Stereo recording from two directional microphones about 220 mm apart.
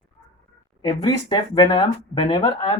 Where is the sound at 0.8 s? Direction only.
20° left (ahead or behind).